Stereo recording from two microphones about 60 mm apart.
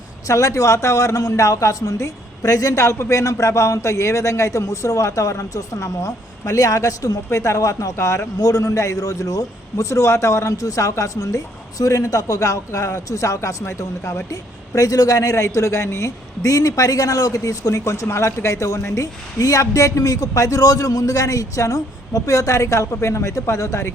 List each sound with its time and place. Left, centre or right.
0.3 s a man's voice: left
14.8 s speech: left